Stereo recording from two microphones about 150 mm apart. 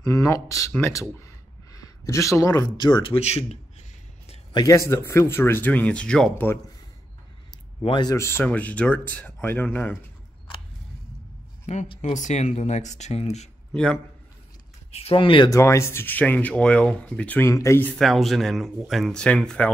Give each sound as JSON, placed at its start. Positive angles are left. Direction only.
{"t": 0.0, "sound": "speech", "side_deg": 20}
{"t": 4.5, "sound": "speech", "side_deg": 25}
{"t": 7.8, "sound": "speech", "side_deg": 30}
{"t": 11.6, "sound": "speech", "side_deg": 50}
{"t": 14.9, "sound": "speech", "side_deg": 45}
{"t": 15.5, "sound": "speech", "side_deg": 20}
{"t": 17.9, "sound": "speech", "side_deg": 0}